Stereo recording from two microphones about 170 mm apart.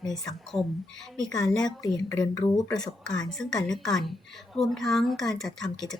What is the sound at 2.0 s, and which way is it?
Speech, 20° left (ahead or behind).